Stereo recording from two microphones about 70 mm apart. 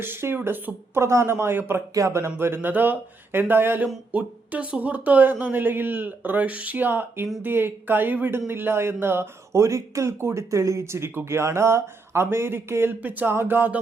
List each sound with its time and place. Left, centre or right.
0.0 s speech: right
1.9 s speech: right
2.2 s speech: right
4.1 s speech: centre